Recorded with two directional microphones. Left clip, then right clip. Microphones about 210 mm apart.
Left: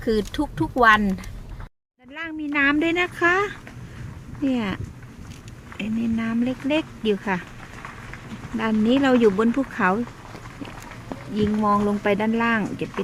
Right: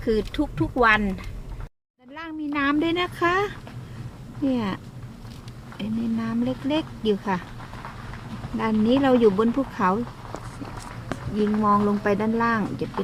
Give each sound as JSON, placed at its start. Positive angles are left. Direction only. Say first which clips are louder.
{"t": 0.0, "sound": "speech", "louder": "left 1 dB", "side_deg": 20}
{"t": 2.1, "sound": "speech", "louder": "left 4 dB", "side_deg": 15}
{"t": 8.5, "sound": "speech", "louder": "left 1 dB", "side_deg": 15}
{"t": 11.6, "sound": "speech", "louder": "even", "side_deg": 15}